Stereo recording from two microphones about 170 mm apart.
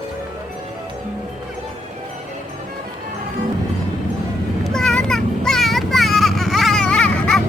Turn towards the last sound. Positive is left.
turn(degrees=5)  # may be behind; listen again after turning